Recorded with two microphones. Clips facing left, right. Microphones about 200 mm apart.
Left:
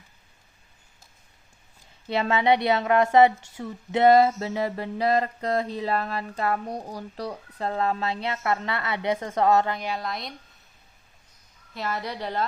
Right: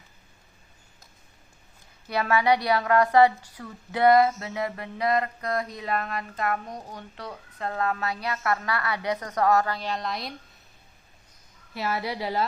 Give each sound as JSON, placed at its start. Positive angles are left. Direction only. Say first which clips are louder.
{"t": 2.0, "sound": "a woman's voice", "louder": "left 1 dB", "side_deg": 25}
{"t": 9.9, "sound": "speech", "louder": "even", "side_deg": 0}
{"t": 11.7, "sound": "speech", "louder": "right 2 dB", "side_deg": -5}